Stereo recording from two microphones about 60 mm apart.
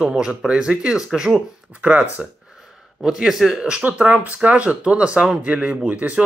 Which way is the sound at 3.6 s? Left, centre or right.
Centre.